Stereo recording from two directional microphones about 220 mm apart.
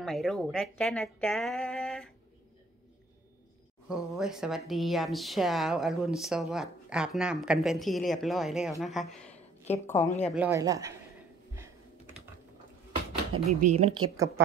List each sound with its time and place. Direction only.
0.0 s a woman's voice: centre (ahead or behind)
3.9 s a woman's voice: centre (ahead or behind)
10.2 s speech: 5° right (ahead or behind)
13.6 s a woman's voice: 30° right (ahead or behind)
14.0 s speech: 15° right (ahead or behind)